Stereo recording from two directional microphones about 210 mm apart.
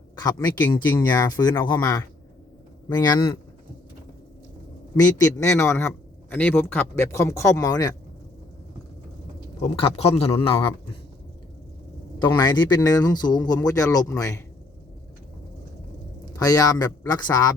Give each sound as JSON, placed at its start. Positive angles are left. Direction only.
{"t": 0.2, "sound": "a man's voice", "side_deg": 20}
{"t": 4.9, "sound": "speech", "side_deg": 15}
{"t": 9.6, "sound": "a man's voice", "side_deg": 25}
{"t": 12.2, "sound": "speech", "side_deg": 20}
{"t": 16.4, "sound": "speech", "side_deg": 15}